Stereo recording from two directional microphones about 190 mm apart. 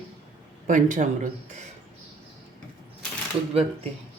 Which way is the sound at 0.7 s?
40° right (ahead or behind).